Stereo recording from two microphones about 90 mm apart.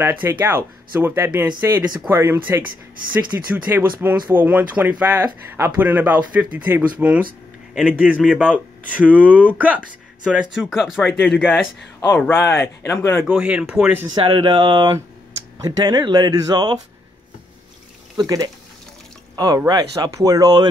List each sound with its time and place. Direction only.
0.0 s speech: 25° right (ahead or behind); by 11.0 s 5° right (ahead or behind)
11.0 s speech: 5° left (ahead or behind)
12.1 s speech: 25° left (ahead or behind)
13.3 s speech: 10° right (ahead or behind)
14.1 s speech: 85° right
14.4 s speech: 60° right (ahead or behind)
18.2 s speech: 40° right (ahead or behind)
19.3 s speech: 50° right (ahead or behind)